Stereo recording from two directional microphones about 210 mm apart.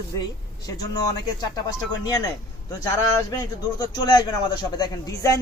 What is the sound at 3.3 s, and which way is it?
A man's voice, 20° left (ahead or behind).